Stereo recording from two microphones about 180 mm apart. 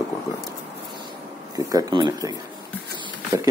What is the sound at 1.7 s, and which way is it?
Speech, 25° right (ahead or behind).